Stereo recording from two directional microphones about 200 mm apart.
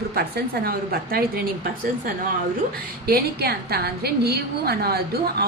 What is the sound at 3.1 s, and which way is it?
A woman's voice, 50° right (ahead or behind).